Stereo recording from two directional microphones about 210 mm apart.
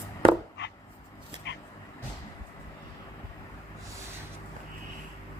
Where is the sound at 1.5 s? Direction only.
60° left (ahead or behind).